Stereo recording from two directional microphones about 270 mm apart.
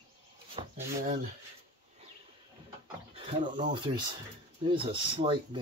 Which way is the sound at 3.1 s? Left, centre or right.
Right.